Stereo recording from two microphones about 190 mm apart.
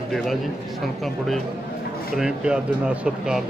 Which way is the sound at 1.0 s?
Centre (ahead or behind).